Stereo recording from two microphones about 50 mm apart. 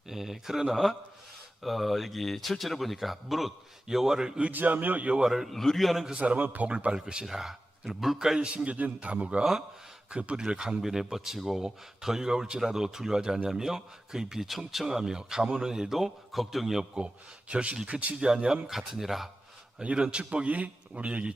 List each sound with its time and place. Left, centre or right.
0.1 s speech: centre
4.5 s a man's voice: right
5.2 s speech: centre
6.1 s a man's voice: right; by 8.4 s centre
8.4 s a man's voice: right
9.4 s speech: centre
10.1 s speech: right; by 16.8 s centre
17.5 s a man's voice: right
18.7 s speech: centre
19.8 s a man's voice: right